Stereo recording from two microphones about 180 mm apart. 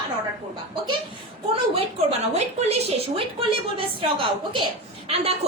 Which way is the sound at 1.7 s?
35° right (ahead or behind).